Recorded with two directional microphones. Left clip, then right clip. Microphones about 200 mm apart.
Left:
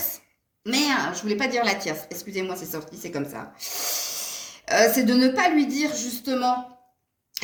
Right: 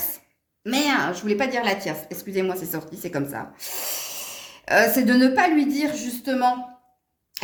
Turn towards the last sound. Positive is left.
turn(degrees=-40)  # may be behind; listen again after turning